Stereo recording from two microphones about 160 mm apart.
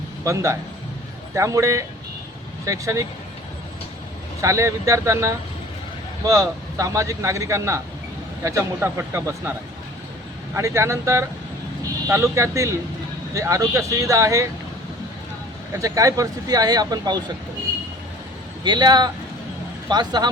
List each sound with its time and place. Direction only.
0.3 s speech: 20° right (ahead or behind)
4.4 s speech: 20° right (ahead or behind)
10.5 s speech: 20° right (ahead or behind)
15.7 s speech: 20° right (ahead or behind)
18.6 s speech: 30° right (ahead or behind)